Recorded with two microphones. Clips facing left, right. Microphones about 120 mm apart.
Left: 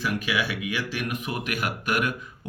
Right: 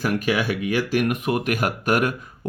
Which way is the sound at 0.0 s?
45° right (ahead or behind).